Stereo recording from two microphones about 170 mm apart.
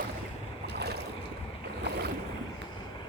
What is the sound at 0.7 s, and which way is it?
Boat, 75° right (ahead or behind).